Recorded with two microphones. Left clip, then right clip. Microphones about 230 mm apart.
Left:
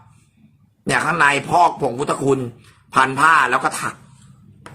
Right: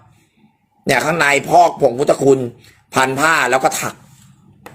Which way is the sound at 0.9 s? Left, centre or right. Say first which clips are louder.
Right 2 dB; centre.